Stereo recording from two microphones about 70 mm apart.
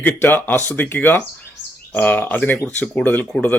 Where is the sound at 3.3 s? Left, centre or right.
Centre.